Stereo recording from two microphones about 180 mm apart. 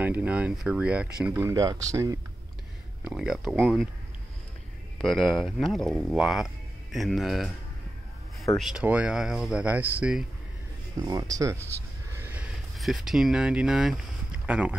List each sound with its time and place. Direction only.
0.0 s speech: 10° right (ahead or behind)
1.4 s speech: 20° right (ahead or behind)
3.0 s speech: 5° right (ahead or behind)
5.0 s speech: centre (ahead or behind)
8.5 s speech: 5° right (ahead or behind)
11.0 s speech: 20° right (ahead or behind)
12.1 s a sound: 10° right (ahead or behind)
12.7 s speech: centre (ahead or behind)